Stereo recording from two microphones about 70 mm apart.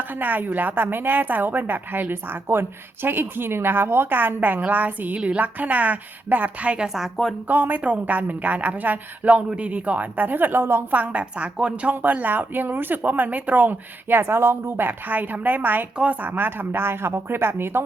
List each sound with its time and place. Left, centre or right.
0.0 s speech: right
6.8 s speech: centre
7.4 s speech: right
10.9 s a woman's voice: centre